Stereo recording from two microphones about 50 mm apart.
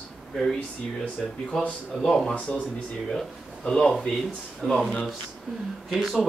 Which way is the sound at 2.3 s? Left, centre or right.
Left.